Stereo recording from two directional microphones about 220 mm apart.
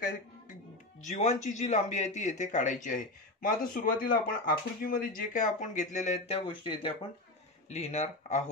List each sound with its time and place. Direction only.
1.0 s a man's voice: 30° left (ahead or behind)